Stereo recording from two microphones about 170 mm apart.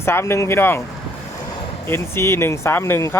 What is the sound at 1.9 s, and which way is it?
Speech, 15° left (ahead or behind).